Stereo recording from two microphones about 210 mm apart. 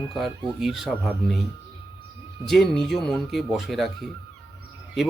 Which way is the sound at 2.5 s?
Centre (ahead or behind).